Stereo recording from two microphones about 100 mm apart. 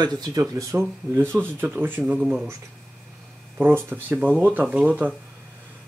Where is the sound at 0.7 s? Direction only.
25° right (ahead or behind).